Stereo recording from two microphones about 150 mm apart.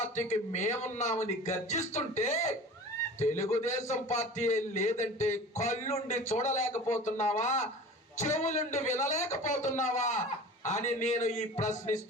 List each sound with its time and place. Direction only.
0.0 s a man's voice: 50° left (ahead or behind)